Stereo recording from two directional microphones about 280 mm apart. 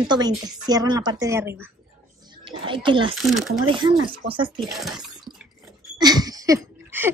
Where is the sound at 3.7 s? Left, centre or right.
Centre.